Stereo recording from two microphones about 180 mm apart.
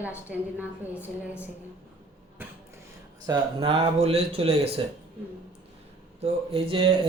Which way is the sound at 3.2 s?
30° right (ahead or behind).